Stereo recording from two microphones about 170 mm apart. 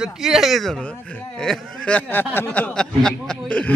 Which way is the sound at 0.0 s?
5° right (ahead or behind).